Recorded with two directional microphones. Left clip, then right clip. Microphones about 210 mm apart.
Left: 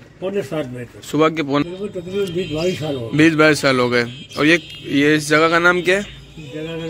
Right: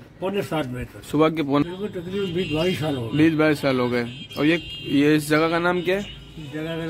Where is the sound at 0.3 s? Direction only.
5° right (ahead or behind).